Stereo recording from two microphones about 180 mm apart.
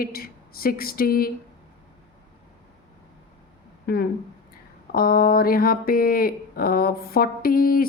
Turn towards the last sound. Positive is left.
turn(degrees=55)  # may be behind; listen again after turning